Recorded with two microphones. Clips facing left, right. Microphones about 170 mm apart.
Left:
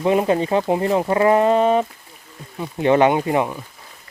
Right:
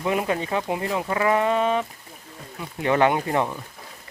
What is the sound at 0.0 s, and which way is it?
Speech, 30° left (ahead or behind).